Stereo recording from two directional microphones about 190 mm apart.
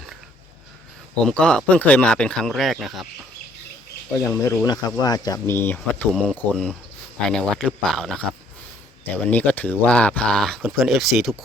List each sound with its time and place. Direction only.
1.1 s speech: 5° left (ahead or behind)
4.3 s speech: 20° left (ahead or behind); by 8.2 s centre (ahead or behind)
9.3 s speech: 10° left (ahead or behind)